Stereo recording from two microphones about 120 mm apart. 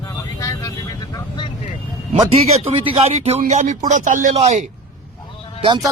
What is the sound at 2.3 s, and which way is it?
Speech, 55° right (ahead or behind).